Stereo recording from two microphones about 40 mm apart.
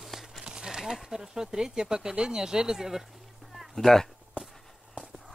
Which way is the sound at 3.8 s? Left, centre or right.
Centre.